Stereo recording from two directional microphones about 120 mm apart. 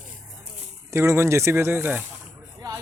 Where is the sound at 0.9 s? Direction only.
25° right (ahead or behind).